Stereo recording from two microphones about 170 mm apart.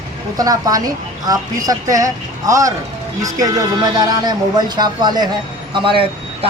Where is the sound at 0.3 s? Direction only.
20° right (ahead or behind).